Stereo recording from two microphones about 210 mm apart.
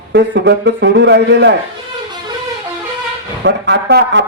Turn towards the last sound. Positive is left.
turn(degrees=-55)  # may be behind; listen again after turning